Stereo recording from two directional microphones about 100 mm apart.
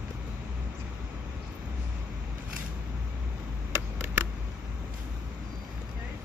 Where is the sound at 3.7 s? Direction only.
25° right (ahead or behind).